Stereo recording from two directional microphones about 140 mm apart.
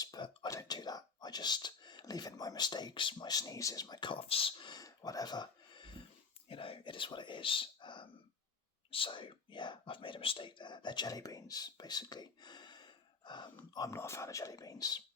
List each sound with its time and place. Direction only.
0.0 s speech: 25° left (ahead or behind)
13.7 s speech: 20° left (ahead or behind)